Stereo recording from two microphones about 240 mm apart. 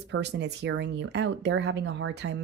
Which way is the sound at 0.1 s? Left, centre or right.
Right.